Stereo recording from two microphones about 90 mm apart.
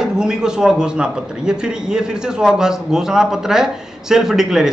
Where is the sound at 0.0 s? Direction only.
5° right (ahead or behind).